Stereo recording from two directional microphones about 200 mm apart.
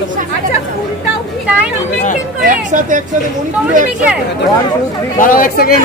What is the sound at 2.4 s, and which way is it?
Speech, 40° right (ahead or behind).